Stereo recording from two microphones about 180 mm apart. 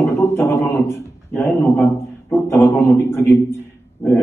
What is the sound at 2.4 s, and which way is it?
A man's voice, 15° left (ahead or behind).